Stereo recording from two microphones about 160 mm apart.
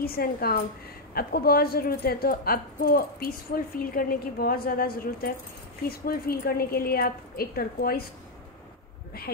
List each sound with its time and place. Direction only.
0.0 s speech: 70° left (ahead or behind)